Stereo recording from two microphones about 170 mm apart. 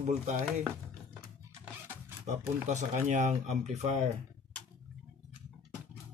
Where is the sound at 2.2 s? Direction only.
45° right (ahead or behind).